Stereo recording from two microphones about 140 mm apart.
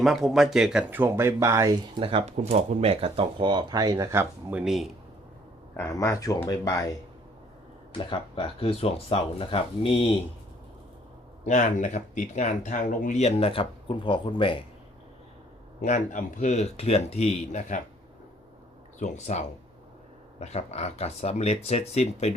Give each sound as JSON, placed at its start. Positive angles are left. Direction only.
{"t": 0.0, "sound": "speech", "side_deg": 0}
{"t": 2.0, "sound": "speech", "side_deg": -40}
{"t": 4.6, "sound": "speech", "side_deg": 0}
{"t": 5.7, "sound": "speech", "side_deg": 20}
{"t": 7.9, "sound": "speech", "side_deg": 40}
{"t": 11.4, "sound": "speech", "side_deg": 60}
{"t": 13.2, "sound": "speech", "side_deg": 45}
{"t": 15.8, "sound": "speech", "side_deg": 60}
{"t": 18.9, "sound": "speech", "side_deg": 60}